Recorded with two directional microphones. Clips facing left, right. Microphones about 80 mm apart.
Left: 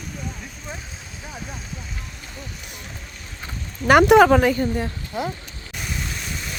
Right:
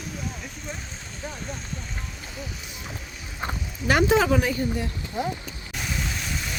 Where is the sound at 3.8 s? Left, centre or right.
Left.